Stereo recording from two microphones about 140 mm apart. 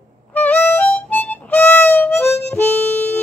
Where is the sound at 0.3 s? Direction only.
10° left (ahead or behind).